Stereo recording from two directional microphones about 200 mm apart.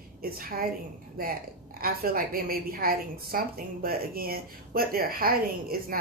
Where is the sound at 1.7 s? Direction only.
45° right (ahead or behind).